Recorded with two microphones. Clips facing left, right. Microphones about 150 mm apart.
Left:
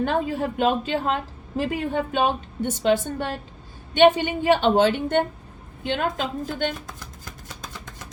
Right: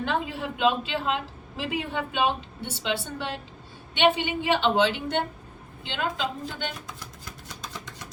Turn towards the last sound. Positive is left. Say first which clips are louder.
# left 7 dB
turn(degrees=45)  # may be behind; listen again after turning